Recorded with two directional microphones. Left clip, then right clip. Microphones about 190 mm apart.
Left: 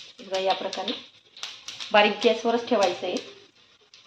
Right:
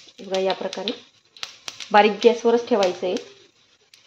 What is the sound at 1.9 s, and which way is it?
Speech, 65° right (ahead or behind).